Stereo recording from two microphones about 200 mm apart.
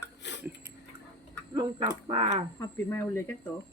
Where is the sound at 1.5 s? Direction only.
25° right (ahead or behind).